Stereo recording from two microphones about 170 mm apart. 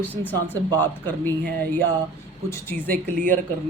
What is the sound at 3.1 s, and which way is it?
Speech, 50° right (ahead or behind).